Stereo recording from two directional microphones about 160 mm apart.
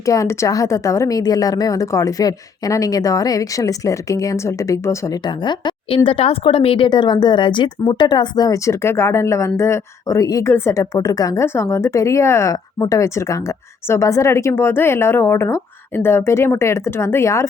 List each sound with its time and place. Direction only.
0.0 s a woman's voice: 20° left (ahead or behind)